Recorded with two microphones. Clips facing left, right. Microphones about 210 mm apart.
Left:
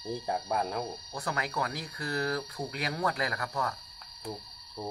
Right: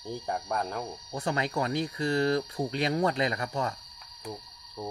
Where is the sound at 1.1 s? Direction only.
25° right (ahead or behind).